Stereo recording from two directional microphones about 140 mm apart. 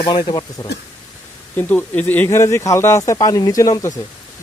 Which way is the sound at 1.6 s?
10° left (ahead or behind).